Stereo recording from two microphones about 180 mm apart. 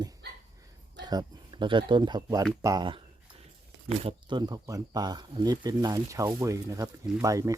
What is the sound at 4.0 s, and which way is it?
Speech, 30° right (ahead or behind).